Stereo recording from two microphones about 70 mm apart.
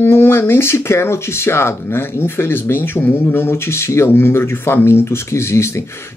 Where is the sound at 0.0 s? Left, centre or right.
Left.